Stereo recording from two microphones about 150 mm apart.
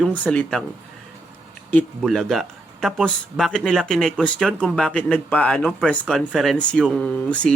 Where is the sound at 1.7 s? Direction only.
5° left (ahead or behind).